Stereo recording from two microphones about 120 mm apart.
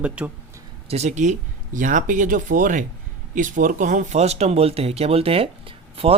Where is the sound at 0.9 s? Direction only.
75° right (ahead or behind); by 6.2 s 55° right (ahead or behind).